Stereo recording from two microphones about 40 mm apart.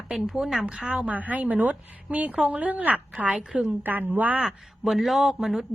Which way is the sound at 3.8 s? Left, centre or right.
Right.